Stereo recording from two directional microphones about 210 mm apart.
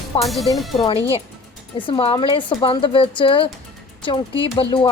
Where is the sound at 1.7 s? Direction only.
25° left (ahead or behind).